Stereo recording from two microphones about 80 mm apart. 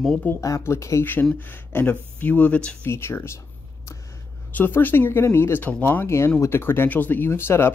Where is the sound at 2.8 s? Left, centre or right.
Left.